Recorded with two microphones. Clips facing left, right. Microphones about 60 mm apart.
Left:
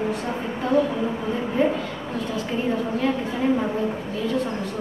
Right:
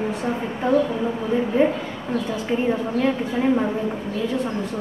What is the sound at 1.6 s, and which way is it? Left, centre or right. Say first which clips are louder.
Speech: right 1 dB; right.